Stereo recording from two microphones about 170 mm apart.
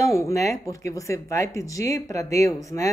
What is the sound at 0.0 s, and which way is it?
Speech, 20° left (ahead or behind).